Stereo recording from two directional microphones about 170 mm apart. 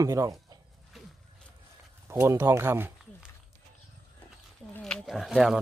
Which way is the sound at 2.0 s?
15° right (ahead or behind).